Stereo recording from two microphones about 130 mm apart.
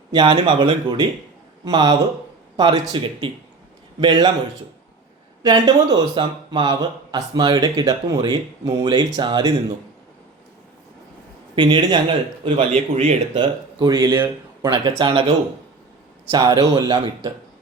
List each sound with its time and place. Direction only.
0.1 s speech: 40° right (ahead or behind)
5.4 s speech: 35° right (ahead or behind)
11.5 s speech: 35° right (ahead or behind)
12.5 s speech: 50° right (ahead or behind)
13.3 s speech: 40° right (ahead or behind)
16.3 s speech: 35° right (ahead or behind)